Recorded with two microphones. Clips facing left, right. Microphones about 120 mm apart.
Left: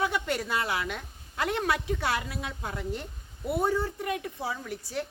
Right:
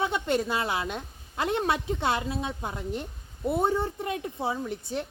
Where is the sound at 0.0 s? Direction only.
25° right (ahead or behind).